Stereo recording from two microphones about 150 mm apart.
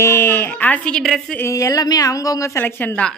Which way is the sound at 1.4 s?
20° left (ahead or behind).